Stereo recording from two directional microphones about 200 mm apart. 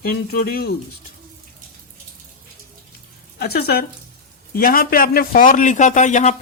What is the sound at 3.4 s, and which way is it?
A man's voice, 50° left (ahead or behind).